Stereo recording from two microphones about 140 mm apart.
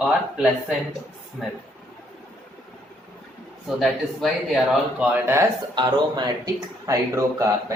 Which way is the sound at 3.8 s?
Centre (ahead or behind).